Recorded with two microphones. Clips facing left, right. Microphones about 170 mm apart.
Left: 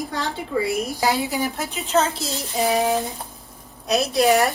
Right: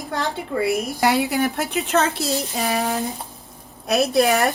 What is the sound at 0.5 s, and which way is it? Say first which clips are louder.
Speech: even; 50° right (ahead or behind).